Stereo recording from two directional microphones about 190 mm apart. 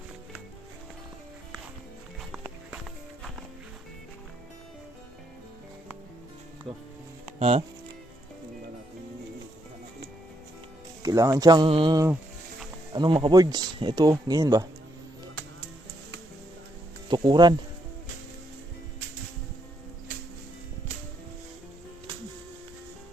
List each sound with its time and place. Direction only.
7.3 s speech: 35° right (ahead or behind)
11.0 s speech: 15° right (ahead or behind)
17.1 s speech: 25° right (ahead or behind)